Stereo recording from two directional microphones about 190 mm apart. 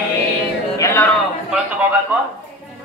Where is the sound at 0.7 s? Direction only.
15° left (ahead or behind).